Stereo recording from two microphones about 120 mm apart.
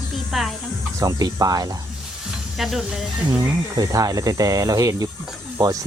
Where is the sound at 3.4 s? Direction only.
30° right (ahead or behind).